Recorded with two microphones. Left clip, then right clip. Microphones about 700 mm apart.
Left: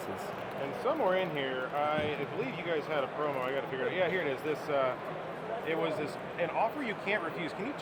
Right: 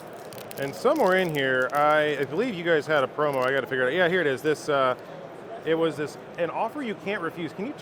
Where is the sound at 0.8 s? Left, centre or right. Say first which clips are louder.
Right 9 dB; right.